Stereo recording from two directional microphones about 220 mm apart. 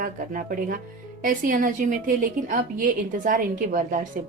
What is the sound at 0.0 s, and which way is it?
A woman's voice, 40° right (ahead or behind).